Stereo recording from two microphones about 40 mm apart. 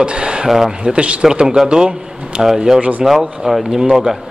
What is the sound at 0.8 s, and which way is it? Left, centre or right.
A man's voice, right.